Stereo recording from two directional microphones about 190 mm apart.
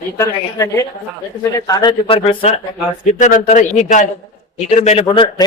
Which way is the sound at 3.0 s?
40° left (ahead or behind).